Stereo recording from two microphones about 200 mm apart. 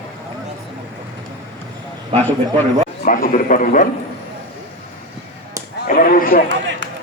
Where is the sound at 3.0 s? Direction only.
40° left (ahead or behind).